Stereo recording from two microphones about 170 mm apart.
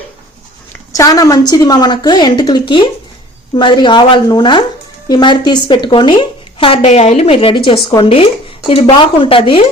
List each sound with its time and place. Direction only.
0.9 s a woman's voice: 20° left (ahead or behind)